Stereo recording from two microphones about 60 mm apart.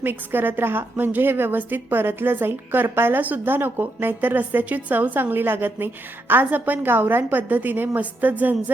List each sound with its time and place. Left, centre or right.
0.0 s a woman's voice: right